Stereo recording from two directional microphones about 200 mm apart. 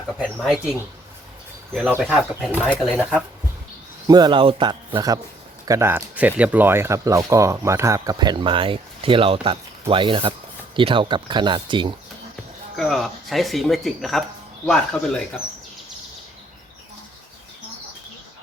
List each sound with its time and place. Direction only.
0.2 s speech: centre (ahead or behind)
4.0 s speech: 20° right (ahead or behind)
12.7 s speech: centre (ahead or behind)